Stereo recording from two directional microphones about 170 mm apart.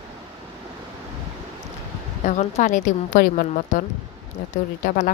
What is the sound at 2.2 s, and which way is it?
A woman's voice, 45° left (ahead or behind).